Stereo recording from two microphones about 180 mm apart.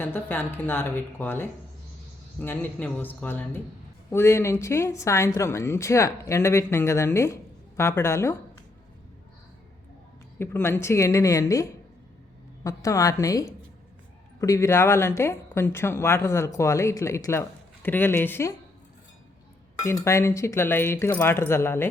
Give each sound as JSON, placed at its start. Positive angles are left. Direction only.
{"t": 0.0, "sound": "speech", "side_deg": 10}
{"t": 10.3, "sound": "speech", "side_deg": 10}
{"t": 19.8, "sound": "speech", "side_deg": 15}